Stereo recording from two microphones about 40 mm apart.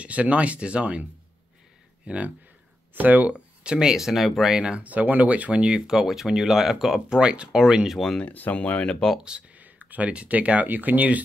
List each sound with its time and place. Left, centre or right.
0.0 s speech: right
2.0 s speech: right
2.9 s speech: right
3.3 s speech: right
4.7 s speech: right
5.7 s speech: centre
7.1 s speech: right
8.3 s speech: left
8.5 s speech: left
9.5 s speech: right
10.7 s speech: right